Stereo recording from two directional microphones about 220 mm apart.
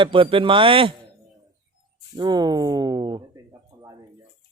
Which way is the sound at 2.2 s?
20° right (ahead or behind).